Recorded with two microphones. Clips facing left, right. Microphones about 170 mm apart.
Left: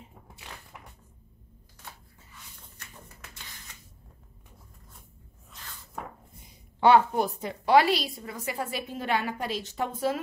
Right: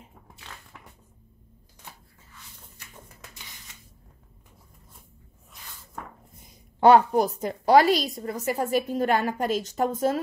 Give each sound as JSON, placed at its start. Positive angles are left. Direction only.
{"t": 6.8, "sound": "a woman's voice", "side_deg": -40}